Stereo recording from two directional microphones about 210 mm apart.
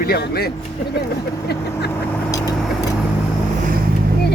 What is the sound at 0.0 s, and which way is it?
Speech, 45° left (ahead or behind).